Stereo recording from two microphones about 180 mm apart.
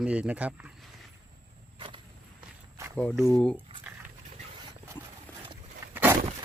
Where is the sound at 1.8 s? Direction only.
25° right (ahead or behind).